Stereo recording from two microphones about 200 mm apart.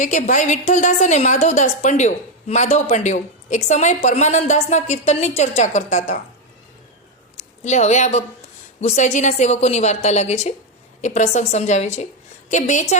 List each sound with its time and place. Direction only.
0.0 s a woman's voice: 40° left (ahead or behind)
7.6 s a woman's voice: 35° left (ahead or behind)